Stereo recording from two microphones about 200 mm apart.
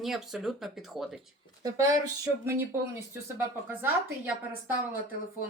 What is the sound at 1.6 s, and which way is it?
Speech, 20° right (ahead or behind).